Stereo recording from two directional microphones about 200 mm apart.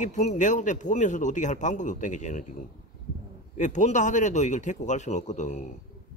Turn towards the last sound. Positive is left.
turn(degrees=35)  # may be behind; listen again after turning